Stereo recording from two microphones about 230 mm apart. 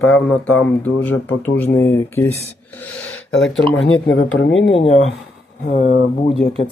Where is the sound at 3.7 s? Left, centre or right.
Left.